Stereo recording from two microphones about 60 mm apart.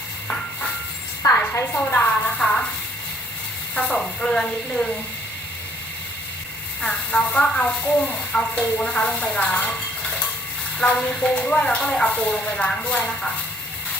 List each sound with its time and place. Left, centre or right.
1.2 s a sound: left
1.7 s a woman's voice: left
2.4 s speech: centre
3.8 s speech: centre
6.8 s speech: centre